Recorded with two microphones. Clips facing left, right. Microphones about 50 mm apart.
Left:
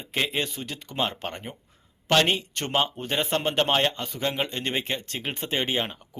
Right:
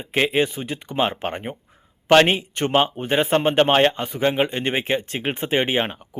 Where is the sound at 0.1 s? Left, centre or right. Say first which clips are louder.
Right 8 dB; right.